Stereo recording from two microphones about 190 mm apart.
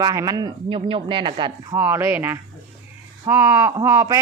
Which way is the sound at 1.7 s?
15° right (ahead or behind).